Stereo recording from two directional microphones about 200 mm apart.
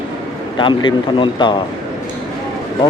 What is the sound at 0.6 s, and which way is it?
Speech, 25° left (ahead or behind).